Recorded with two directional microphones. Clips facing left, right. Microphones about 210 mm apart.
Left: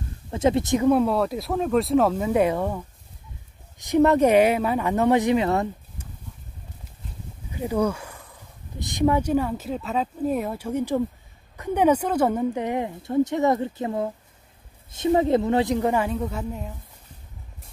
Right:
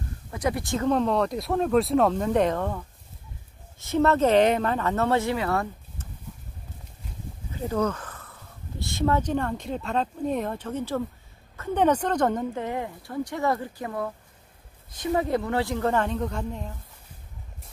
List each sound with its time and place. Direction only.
0.3 s speech: 25° left (ahead or behind)
0.8 s speech: 10° left (ahead or behind)
7.5 s speech: 10° left (ahead or behind)